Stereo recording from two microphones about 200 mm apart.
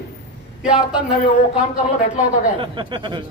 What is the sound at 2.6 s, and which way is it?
Speech, 25° right (ahead or behind).